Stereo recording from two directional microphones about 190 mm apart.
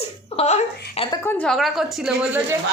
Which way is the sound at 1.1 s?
10° left (ahead or behind).